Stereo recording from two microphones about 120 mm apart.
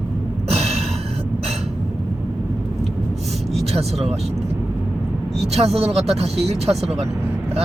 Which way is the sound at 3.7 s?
60° right (ahead or behind).